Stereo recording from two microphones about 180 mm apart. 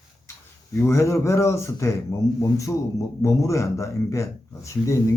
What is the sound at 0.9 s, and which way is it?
A man's voice, 15° left (ahead or behind).